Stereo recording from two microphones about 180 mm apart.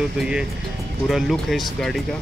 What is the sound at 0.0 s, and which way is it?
Speech, 5° right (ahead or behind).